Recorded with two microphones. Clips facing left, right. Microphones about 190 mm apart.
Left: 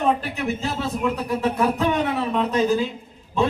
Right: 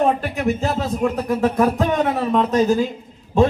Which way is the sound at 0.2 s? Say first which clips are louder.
Right 5 dB; 45° right (ahead or behind).